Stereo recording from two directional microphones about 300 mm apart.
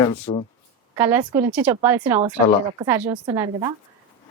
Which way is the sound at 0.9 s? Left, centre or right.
Centre.